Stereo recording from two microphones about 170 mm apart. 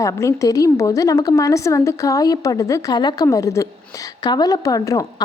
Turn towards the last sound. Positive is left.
turn(degrees=20)  # may be behind; listen again after turning